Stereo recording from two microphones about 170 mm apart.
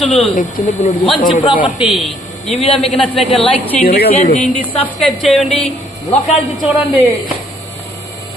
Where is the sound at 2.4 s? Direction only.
35° left (ahead or behind).